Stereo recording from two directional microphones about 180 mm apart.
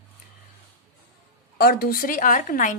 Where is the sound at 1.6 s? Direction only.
55° left (ahead or behind).